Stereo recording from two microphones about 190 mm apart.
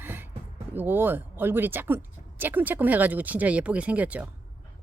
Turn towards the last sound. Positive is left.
turn(degrees=-5)  # may be behind; listen again after turning